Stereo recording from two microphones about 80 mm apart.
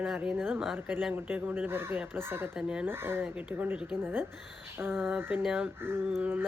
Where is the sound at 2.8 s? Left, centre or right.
Right.